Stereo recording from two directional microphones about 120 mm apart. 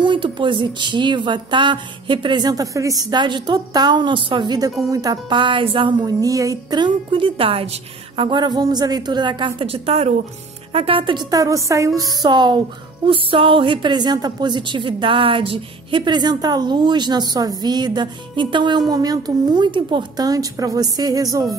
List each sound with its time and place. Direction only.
0.0 s a woman's voice: 40° right (ahead or behind)
8.3 s a woman's voice: 35° right (ahead or behind)
11.2 s a woman's voice: 30° right (ahead or behind); by 16.0 s 45° right (ahead or behind)
16.0 s a woman's voice: 35° right (ahead or behind)